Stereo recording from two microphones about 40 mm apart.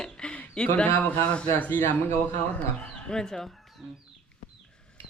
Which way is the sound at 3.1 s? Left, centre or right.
Centre.